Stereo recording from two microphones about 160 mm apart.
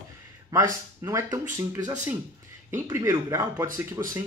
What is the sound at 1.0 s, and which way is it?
Speech, 15° right (ahead or behind).